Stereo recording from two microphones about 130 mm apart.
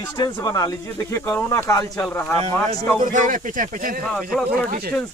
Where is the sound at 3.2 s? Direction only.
90° right.